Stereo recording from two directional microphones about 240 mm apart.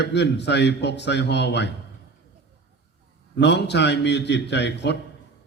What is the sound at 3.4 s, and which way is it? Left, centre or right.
A man's voice, left.